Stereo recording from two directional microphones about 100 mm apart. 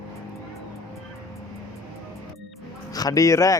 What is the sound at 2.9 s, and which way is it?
Speech, 35° left (ahead or behind).